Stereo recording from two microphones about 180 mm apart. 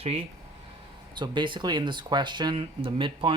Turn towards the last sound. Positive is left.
turn(degrees=-30)  # may be behind; listen again after turning